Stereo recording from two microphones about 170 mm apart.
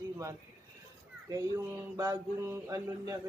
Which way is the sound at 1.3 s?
20° right (ahead or behind).